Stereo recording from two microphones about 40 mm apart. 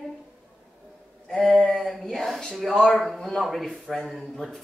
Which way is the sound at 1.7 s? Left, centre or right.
Centre.